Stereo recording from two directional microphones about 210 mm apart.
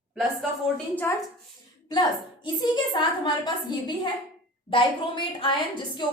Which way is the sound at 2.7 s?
20° left (ahead or behind).